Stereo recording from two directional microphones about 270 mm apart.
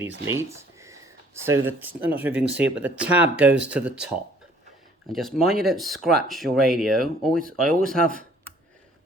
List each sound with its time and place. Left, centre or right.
0.5 s speech: centre